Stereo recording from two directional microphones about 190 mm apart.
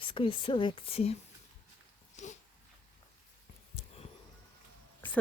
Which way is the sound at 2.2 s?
40° left (ahead or behind).